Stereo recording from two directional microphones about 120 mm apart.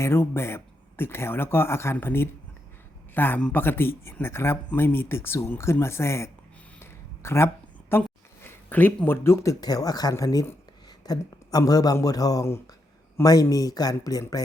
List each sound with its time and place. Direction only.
0.0 s speech: 20° left (ahead or behind)
7.2 s a sound: 20° left (ahead or behind)
8.4 s speech: 15° left (ahead or behind); by 14.4 s 30° left (ahead or behind)